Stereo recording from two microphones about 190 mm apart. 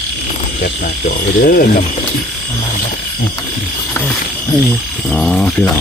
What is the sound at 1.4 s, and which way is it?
Speech, 45° left (ahead or behind).